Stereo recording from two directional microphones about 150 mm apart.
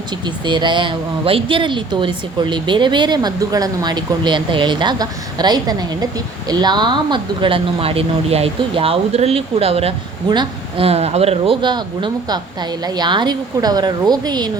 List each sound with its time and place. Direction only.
0.4 s a woman's voice: 30° right (ahead or behind)